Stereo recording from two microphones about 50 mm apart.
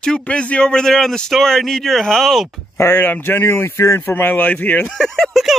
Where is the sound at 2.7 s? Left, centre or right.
Left.